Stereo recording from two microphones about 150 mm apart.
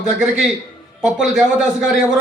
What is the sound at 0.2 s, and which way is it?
A man's voice, 5° right (ahead or behind).